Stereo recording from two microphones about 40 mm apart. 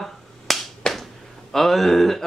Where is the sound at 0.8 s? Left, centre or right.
Centre.